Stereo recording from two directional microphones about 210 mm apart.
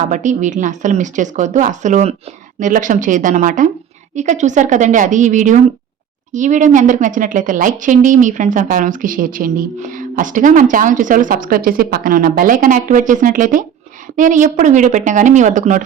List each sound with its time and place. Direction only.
0.1 s a woman's voice: 35° right (ahead or behind)